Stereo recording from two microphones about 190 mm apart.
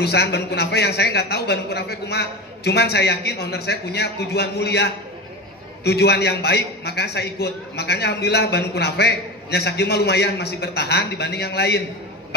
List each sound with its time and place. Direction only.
0.0 s a man's voice: 60° left (ahead or behind)